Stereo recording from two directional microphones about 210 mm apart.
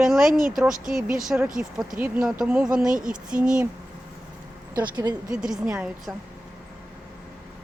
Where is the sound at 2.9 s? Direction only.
40° right (ahead or behind).